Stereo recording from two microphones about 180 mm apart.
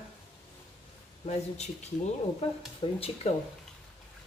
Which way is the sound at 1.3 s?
40° left (ahead or behind).